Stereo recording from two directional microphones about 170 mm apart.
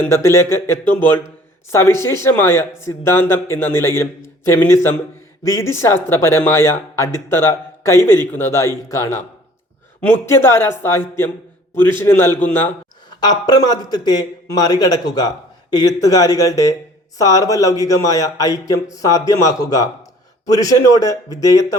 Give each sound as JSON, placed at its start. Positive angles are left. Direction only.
{"t": 0.0, "sound": "speech", "side_deg": 15}
{"t": 13.1, "sound": "a man's voice", "side_deg": 25}